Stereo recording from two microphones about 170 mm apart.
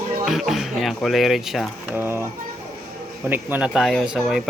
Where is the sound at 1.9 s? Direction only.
15° right (ahead or behind).